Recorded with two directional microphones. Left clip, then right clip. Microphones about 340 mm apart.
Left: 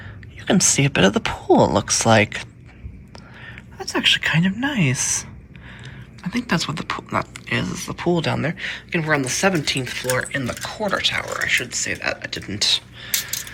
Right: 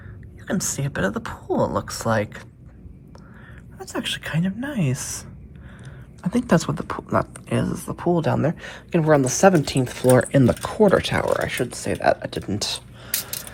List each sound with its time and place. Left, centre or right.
0.4 s speech: centre
3.8 s speech: centre